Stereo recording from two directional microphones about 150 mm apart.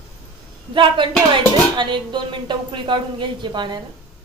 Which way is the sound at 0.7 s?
35° right (ahead or behind).